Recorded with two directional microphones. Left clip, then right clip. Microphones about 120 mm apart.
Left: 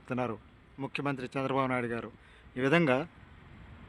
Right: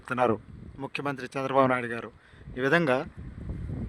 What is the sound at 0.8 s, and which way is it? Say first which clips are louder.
Speech: right 2 dB; 60° right (ahead or behind).